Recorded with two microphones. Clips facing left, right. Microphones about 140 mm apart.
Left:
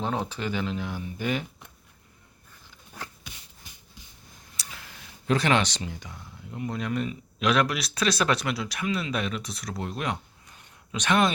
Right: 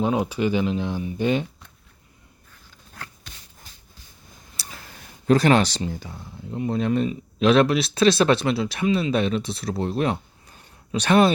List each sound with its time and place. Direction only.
0.0 s speech: 10° right (ahead or behind)
2.9 s a sound: 15° left (ahead or behind)
4.5 s speech: 40° right (ahead or behind)